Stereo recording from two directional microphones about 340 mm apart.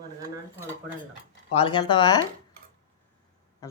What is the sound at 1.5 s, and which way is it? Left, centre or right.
Speech, centre.